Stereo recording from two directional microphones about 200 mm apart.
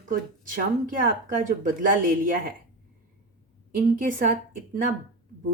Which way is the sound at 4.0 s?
40° right (ahead or behind).